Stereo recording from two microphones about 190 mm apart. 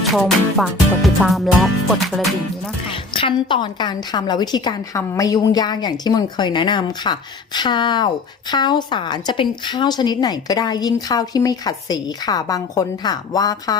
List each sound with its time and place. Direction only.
0.0 s music: centre (ahead or behind)
3.1 s a woman's voice: 25° left (ahead or behind)